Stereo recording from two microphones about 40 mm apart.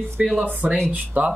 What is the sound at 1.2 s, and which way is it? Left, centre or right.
Speech, right.